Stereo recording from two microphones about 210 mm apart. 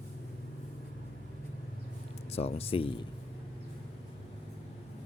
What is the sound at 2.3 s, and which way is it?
Speech, 30° left (ahead or behind).